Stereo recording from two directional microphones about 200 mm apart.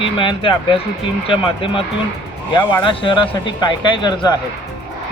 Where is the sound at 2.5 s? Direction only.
20° left (ahead or behind).